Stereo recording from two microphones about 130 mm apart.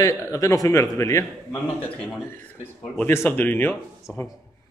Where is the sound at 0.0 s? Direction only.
25° left (ahead or behind).